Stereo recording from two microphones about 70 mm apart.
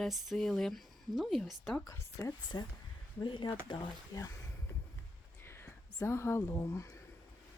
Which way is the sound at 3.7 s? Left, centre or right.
Left.